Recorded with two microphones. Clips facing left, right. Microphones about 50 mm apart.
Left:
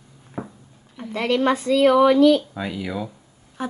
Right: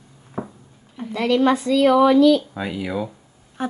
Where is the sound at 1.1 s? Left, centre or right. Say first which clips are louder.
Right 2 dB; left.